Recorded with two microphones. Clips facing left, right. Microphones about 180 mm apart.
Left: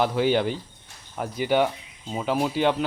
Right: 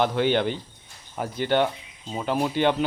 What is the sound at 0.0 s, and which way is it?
Speech, 5° left (ahead or behind).